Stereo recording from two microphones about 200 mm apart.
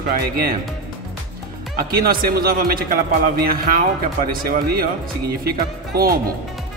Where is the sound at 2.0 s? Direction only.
50° right (ahead or behind).